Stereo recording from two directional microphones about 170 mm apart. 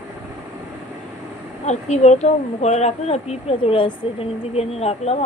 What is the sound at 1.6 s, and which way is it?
Speech, 40° left (ahead or behind).